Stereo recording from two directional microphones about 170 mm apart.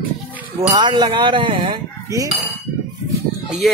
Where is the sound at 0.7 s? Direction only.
25° right (ahead or behind).